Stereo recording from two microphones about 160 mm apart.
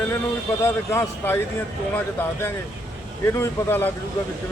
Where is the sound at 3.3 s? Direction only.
15° left (ahead or behind).